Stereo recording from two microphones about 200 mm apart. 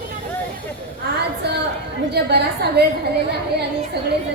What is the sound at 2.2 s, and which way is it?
Speech, 55° right (ahead or behind).